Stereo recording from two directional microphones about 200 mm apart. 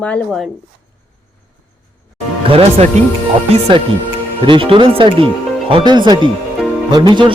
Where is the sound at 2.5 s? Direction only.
30° right (ahead or behind).